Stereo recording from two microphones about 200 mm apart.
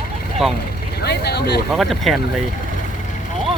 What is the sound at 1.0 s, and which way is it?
Vehicle, 55° left (ahead or behind).